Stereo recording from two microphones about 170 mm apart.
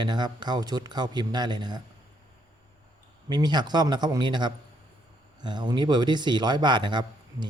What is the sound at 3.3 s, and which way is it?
Speech, 25° right (ahead or behind).